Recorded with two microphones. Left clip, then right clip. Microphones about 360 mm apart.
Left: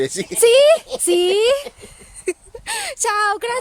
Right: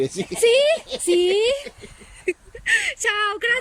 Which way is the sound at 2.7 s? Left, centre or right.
Left.